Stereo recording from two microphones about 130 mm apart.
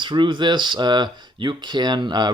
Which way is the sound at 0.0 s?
35° right (ahead or behind).